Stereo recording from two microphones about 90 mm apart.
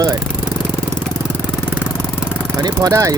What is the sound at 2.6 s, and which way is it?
Speech, 40° right (ahead or behind).